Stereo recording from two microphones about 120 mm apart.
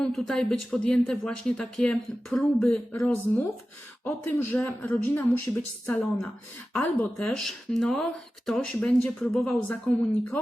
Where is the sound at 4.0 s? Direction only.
15° left (ahead or behind).